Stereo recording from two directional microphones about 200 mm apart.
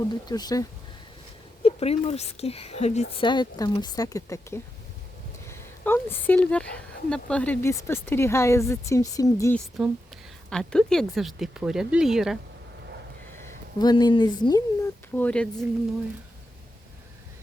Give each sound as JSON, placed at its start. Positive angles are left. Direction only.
{"t": 0.1, "sound": "speech", "side_deg": 20}
{"t": 1.6, "sound": "speech", "side_deg": 30}
{"t": 9.8, "sound": "speech", "side_deg": 0}
{"t": 13.7, "sound": "speech", "side_deg": 20}
{"t": 15.1, "sound": "speech", "side_deg": 5}